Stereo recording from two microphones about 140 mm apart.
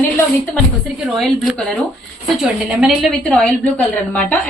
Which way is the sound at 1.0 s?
Centre (ahead or behind).